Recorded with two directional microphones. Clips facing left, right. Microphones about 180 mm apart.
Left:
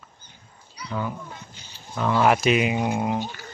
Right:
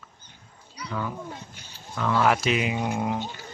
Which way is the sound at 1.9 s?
25° left (ahead or behind).